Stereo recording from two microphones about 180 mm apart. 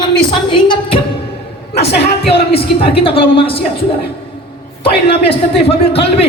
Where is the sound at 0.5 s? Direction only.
30° left (ahead or behind).